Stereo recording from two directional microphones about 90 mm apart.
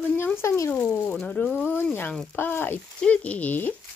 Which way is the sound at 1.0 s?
10° left (ahead or behind).